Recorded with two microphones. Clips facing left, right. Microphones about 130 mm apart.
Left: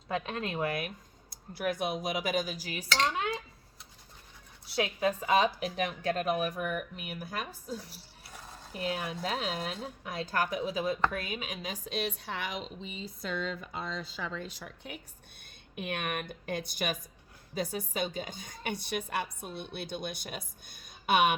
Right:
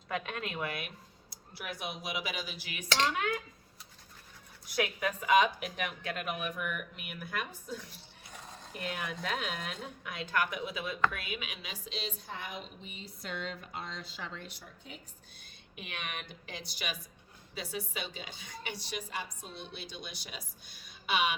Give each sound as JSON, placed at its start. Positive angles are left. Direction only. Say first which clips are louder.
{"t": 0.1, "sound": "a woman's voice", "louder": "left 3 dB", "side_deg": 30}
{"t": 4.6, "sound": "a woman's voice", "louder": "left 3 dB", "side_deg": 30}
{"t": 14.5, "sound": "a woman's voice", "louder": "left 6 dB", "side_deg": 70}